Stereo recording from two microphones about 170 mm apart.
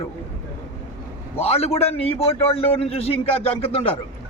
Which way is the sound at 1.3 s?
35° left (ahead or behind).